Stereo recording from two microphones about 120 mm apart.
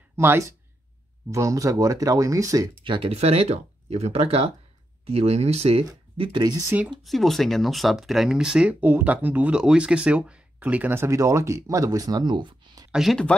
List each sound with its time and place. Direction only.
0.1 s speech: 20° right (ahead or behind)
2.8 s speech: 50° right (ahead or behind)
7.0 s speech: centre (ahead or behind); by 12.9 s 35° right (ahead or behind)
12.9 s speech: centre (ahead or behind)